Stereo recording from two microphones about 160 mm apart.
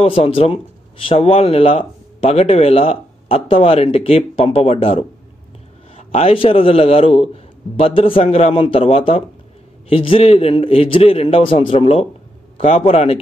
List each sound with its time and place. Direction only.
0.0 s speech: 40° left (ahead or behind)